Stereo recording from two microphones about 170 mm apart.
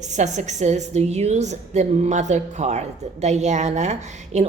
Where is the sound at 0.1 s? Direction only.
45° right (ahead or behind).